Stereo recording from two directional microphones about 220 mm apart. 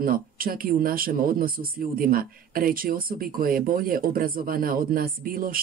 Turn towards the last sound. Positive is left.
turn(degrees=-40)  # may be behind; listen again after turning